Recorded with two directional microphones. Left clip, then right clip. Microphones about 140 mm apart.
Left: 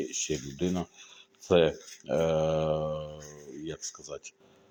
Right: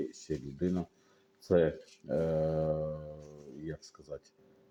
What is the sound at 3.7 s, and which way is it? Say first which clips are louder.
Speech: left 6 dB; 5° right (ahead or behind).